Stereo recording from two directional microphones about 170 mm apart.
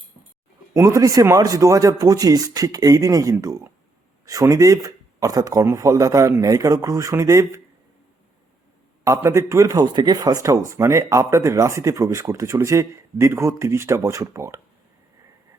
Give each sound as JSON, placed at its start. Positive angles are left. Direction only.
{"t": 0.7, "sound": "speech", "side_deg": -20}
{"t": 9.0, "sound": "speech", "side_deg": -15}